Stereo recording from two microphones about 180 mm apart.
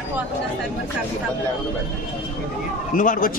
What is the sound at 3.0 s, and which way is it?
Speech, 45° left (ahead or behind).